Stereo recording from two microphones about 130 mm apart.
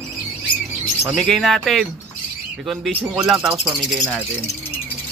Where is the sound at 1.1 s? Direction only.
5° left (ahead or behind).